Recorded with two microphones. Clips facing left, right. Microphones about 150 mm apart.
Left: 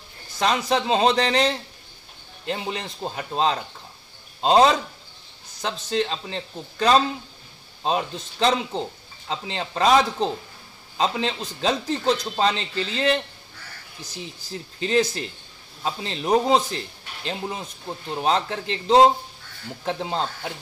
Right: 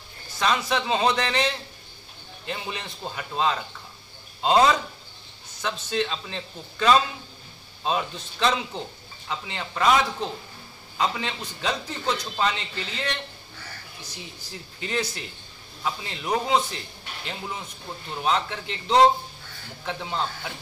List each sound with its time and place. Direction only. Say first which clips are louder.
0.4 s a man's voice: left 3 dB; 35° left (ahead or behind)
14.8 s a man's voice: left 8 dB; 30° left (ahead or behind)